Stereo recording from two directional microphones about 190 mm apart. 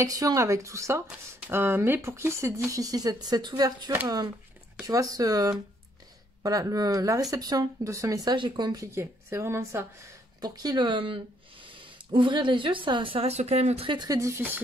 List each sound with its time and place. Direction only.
0.0 s speech: 20° right (ahead or behind)